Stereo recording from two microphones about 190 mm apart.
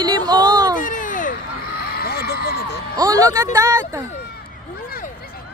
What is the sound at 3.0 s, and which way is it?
Speech, 20° right (ahead or behind).